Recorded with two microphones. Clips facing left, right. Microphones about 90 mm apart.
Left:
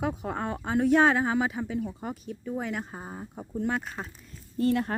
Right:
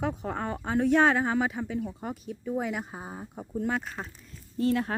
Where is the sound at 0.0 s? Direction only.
5° left (ahead or behind).